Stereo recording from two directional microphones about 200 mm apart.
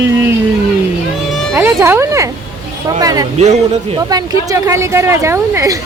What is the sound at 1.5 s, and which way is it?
Speech, 15° right (ahead or behind).